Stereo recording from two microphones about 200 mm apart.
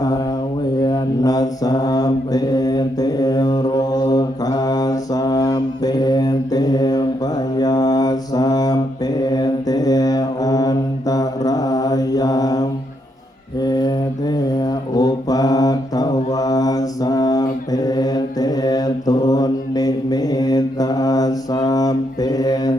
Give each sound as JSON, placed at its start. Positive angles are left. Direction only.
{"t": 0.9, "sound": "mantra", "side_deg": 20}